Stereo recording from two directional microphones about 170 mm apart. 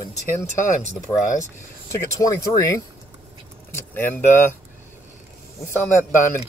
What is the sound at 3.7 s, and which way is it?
Keys jangling, 15° left (ahead or behind).